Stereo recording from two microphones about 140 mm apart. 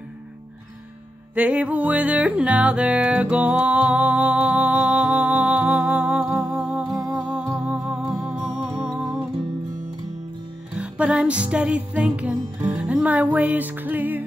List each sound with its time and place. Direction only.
1.3 s music: 10° right (ahead or behind)
10.8 s music: 10° right (ahead or behind)